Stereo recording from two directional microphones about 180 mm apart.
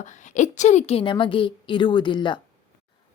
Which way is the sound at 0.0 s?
40° left (ahead or behind).